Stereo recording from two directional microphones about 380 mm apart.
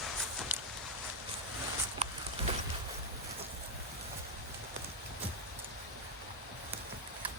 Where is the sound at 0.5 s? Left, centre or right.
Centre.